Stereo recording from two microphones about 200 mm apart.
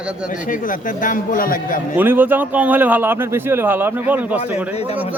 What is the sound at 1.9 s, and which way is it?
Speech, 10° right (ahead or behind).